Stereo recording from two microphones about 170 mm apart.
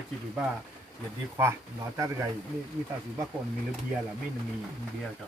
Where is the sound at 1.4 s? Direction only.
15° right (ahead or behind).